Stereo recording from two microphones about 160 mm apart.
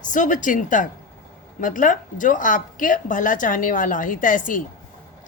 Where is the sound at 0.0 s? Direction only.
55° left (ahead or behind).